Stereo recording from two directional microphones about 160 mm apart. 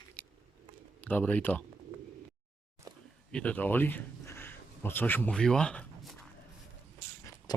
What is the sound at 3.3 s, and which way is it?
Speech, 10° left (ahead or behind).